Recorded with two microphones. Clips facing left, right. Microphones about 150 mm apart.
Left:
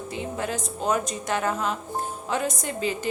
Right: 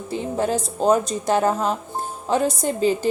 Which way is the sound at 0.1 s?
35° right (ahead or behind).